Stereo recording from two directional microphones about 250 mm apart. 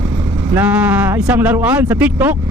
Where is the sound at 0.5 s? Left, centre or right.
Centre.